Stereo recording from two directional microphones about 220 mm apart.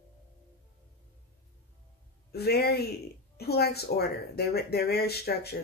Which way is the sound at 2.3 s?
45° left (ahead or behind).